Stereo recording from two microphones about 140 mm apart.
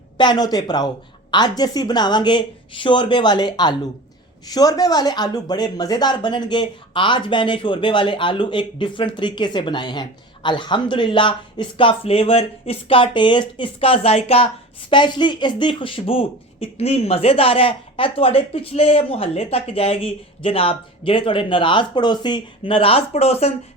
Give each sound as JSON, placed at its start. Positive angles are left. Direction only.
{"t": 0.2, "sound": "speech", "side_deg": 30}